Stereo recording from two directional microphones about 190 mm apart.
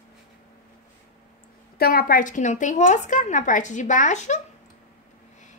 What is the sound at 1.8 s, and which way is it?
A woman's voice, 55° left (ahead or behind).